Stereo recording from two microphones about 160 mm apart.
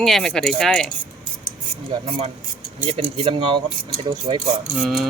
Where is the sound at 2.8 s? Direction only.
35° right (ahead or behind).